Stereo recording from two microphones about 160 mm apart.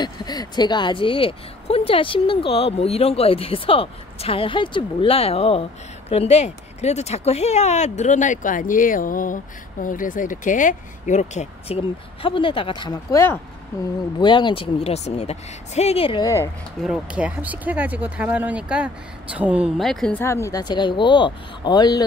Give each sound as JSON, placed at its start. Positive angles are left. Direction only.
{"t": 0.0, "sound": "speech", "side_deg": 25}
{"t": 14.2, "sound": "speech", "side_deg": 30}
{"t": 16.8, "sound": "speech", "side_deg": -5}